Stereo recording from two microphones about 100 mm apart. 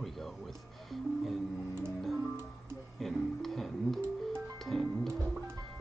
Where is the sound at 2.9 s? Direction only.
5° left (ahead or behind).